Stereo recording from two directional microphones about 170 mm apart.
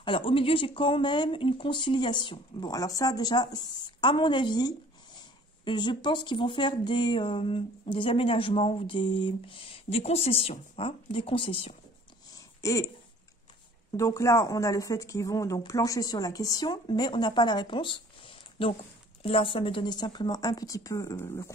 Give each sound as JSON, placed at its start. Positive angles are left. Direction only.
{"t": 0.0, "sound": "speech", "side_deg": 30}
{"t": 12.3, "sound": "a sound", "side_deg": 20}
{"t": 13.9, "sound": "speech", "side_deg": 20}